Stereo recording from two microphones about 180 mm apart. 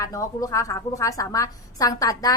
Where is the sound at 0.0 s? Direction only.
20° left (ahead or behind).